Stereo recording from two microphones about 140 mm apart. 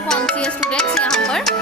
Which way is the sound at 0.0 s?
10° left (ahead or behind).